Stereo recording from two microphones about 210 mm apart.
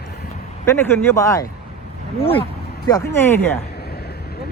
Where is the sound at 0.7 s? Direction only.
15° left (ahead or behind).